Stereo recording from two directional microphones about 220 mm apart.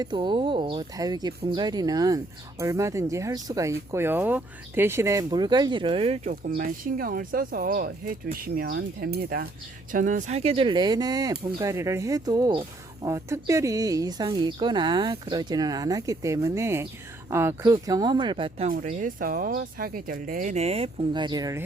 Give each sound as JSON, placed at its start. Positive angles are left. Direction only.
{"t": 0.0, "sound": "speech", "side_deg": -20}
{"t": 18.7, "sound": "speech", "side_deg": -35}